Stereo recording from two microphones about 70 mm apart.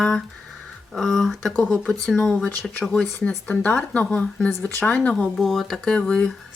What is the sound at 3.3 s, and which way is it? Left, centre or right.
Speech, left.